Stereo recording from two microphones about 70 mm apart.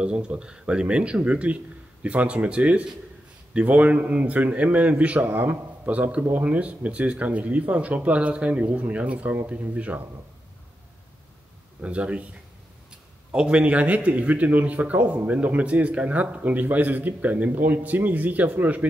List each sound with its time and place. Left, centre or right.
0.0 s a man's voice: centre
11.8 s speech: centre
13.3 s a man's voice: centre